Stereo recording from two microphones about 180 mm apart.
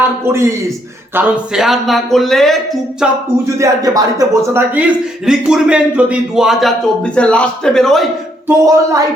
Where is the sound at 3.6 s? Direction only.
20° right (ahead or behind).